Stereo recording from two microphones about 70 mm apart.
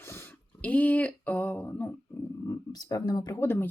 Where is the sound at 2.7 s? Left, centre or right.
Left.